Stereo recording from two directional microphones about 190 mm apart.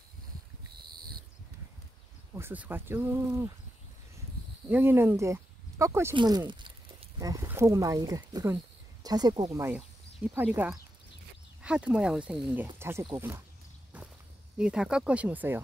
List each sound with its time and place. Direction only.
2.3 s speech: 10° right (ahead or behind)
4.6 s speech: 10° right (ahead or behind)
14.6 s speech: 5° right (ahead or behind)